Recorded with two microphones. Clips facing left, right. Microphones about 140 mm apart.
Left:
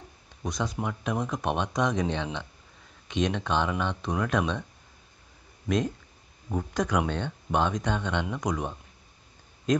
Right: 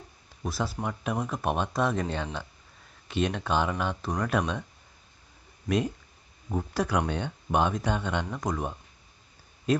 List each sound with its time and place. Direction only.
0.4 s speech: 5° right (ahead or behind)
5.7 s speech: 10° right (ahead or behind)